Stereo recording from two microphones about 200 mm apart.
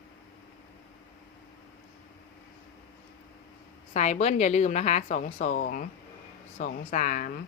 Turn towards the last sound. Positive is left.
turn(degrees=40)  # may be behind; listen again after turning